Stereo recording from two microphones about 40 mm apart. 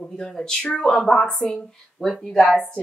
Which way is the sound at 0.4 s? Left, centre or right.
Centre.